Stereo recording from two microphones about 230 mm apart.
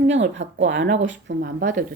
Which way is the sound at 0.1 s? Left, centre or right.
Right.